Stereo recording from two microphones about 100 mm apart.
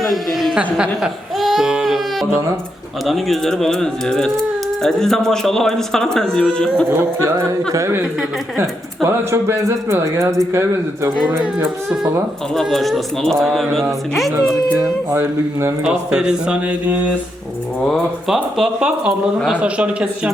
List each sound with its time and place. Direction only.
0.0 s speech: centre (ahead or behind)
0.5 s speech: 10° right (ahead or behind)
3.1 s speech: 5° left (ahead or behind)
7.3 s speech: 30° right (ahead or behind)
9.0 s speech: 25° right (ahead or behind)
12.5 s speech: centre (ahead or behind)
15.1 s speech: 25° right (ahead or behind)
15.8 s speech: 10° right (ahead or behind)
17.8 s speech: 5° left (ahead or behind)
18.5 s speech: 5° right (ahead or behind)